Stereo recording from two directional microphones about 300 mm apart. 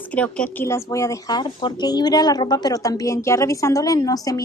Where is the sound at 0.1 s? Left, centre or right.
Centre.